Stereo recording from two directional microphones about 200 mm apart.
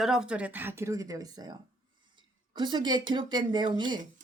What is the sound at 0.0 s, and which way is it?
A man's voice, 5° right (ahead or behind).